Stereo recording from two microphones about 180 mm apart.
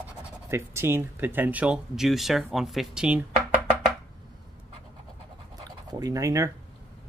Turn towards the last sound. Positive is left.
turn(degrees=-15)  # may be behind; listen again after turning